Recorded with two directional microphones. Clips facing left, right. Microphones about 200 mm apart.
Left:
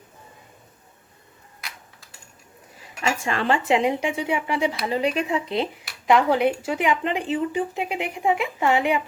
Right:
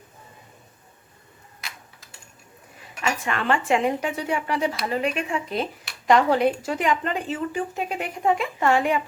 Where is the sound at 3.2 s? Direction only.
25° left (ahead or behind); by 4.8 s 10° left (ahead or behind).